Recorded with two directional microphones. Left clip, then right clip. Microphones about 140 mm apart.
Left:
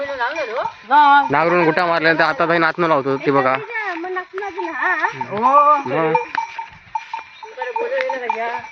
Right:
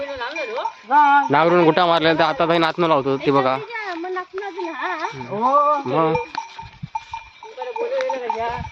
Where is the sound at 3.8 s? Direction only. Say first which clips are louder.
Left 3 dB; 35° right (ahead or behind).